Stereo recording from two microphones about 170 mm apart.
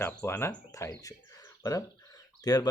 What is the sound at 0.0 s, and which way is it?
Speech, 15° left (ahead or behind).